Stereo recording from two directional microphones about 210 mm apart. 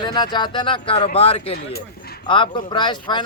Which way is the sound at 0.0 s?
20° left (ahead or behind).